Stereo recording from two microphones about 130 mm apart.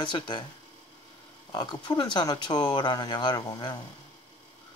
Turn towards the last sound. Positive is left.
turn(degrees=30)  # may be behind; listen again after turning